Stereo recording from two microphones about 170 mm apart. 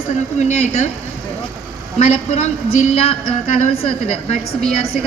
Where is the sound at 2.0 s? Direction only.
40° left (ahead or behind).